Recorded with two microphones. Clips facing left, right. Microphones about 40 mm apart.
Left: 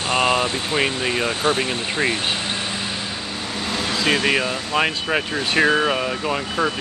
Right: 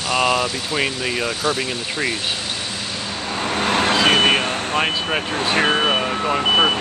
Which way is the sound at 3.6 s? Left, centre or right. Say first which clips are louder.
Right 7 dB; right.